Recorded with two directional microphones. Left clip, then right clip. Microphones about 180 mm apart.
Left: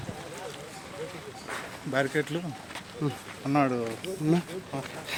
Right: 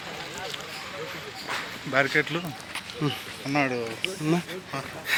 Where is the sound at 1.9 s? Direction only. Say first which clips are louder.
Right 5 dB; 25° left (ahead or behind).